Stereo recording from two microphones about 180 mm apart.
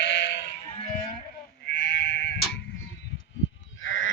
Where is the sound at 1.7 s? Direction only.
90° left.